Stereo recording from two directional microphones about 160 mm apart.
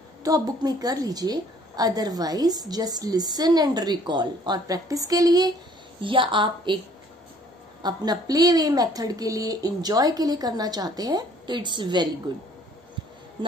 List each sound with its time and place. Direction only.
0.2 s a woman's voice: 25° right (ahead or behind)
7.8 s a woman's voice: 25° right (ahead or behind)